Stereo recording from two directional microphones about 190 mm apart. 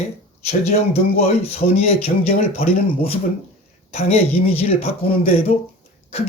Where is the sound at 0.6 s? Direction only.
35° left (ahead or behind).